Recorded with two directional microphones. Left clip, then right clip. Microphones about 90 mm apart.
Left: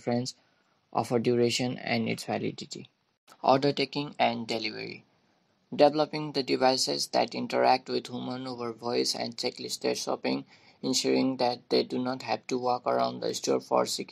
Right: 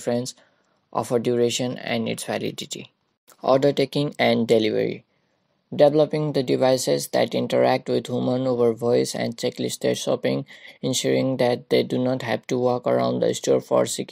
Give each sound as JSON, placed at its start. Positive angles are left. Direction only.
{"t": 0.0, "sound": "speech", "side_deg": -60}
{"t": 2.5, "sound": "speech", "side_deg": -90}
{"t": 3.3, "sound": "speech", "side_deg": -55}
{"t": 4.5, "sound": "speech", "side_deg": -55}